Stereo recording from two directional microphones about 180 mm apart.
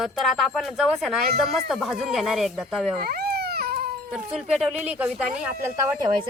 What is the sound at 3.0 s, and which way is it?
Baby cry, 60° right (ahead or behind).